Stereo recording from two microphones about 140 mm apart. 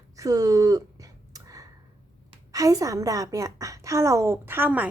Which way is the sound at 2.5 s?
25° right (ahead or behind).